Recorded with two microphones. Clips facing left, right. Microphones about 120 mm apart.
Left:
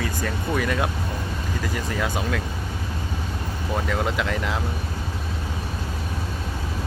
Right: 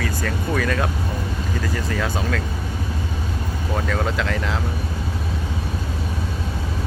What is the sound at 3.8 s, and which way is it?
Speech, 15° left (ahead or behind).